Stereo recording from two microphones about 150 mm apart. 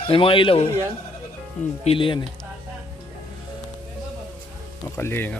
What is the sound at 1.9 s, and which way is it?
Speech, 35° left (ahead or behind).